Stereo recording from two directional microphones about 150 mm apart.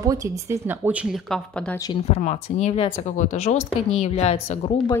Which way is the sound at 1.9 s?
45° left (ahead or behind).